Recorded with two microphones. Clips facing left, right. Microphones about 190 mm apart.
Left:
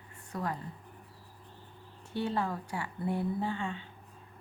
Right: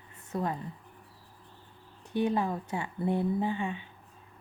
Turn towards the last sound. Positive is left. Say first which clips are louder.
# right 4 dB
turn(degrees=-15)  # may be behind; listen again after turning